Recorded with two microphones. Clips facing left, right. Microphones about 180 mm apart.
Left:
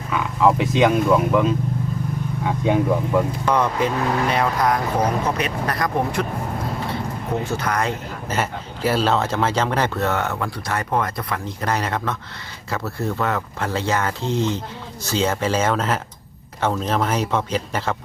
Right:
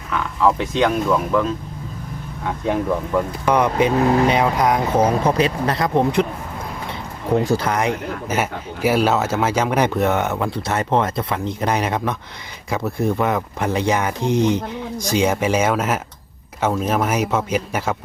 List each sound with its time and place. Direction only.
0.1 s speech: 5° left (ahead or behind)
3.4 s speech: 15° right (ahead or behind)
7.4 s speech: 35° right (ahead or behind)
7.7 s speech: 15° right (ahead or behind)